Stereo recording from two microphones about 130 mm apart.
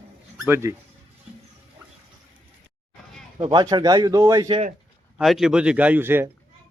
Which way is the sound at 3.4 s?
35° right (ahead or behind).